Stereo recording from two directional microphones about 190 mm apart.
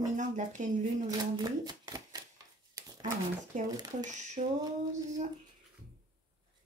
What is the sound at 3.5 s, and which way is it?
Speech, 40° right (ahead or behind).